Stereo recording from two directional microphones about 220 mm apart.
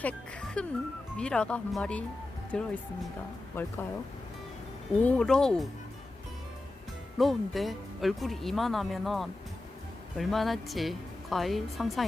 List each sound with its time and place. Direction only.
0.0 s speech: 5° left (ahead or behind)
4.9 s speech: 5° left (ahead or behind)
7.2 s speech: centre (ahead or behind)